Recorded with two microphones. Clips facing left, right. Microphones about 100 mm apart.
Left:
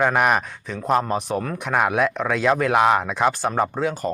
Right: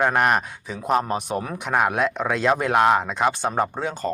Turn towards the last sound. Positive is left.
turn(degrees=0)  # may be behind; listen again after turning